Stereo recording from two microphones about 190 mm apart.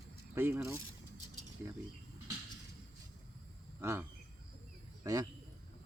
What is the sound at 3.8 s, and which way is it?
Speech, 15° right (ahead or behind).